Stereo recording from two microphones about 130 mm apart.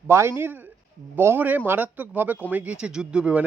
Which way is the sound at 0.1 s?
20° right (ahead or behind).